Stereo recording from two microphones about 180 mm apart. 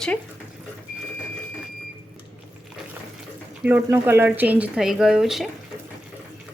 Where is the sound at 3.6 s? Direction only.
10° right (ahead or behind).